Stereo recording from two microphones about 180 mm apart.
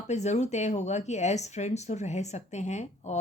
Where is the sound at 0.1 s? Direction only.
40° left (ahead or behind).